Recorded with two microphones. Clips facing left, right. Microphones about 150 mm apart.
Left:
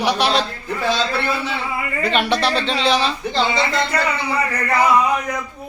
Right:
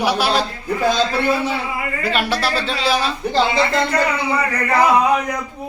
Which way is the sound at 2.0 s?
5° right (ahead or behind).